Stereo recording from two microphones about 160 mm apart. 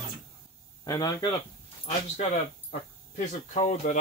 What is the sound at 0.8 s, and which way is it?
Speech, 25° left (ahead or behind).